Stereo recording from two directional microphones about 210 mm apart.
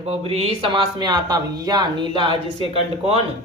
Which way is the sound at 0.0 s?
30° right (ahead or behind).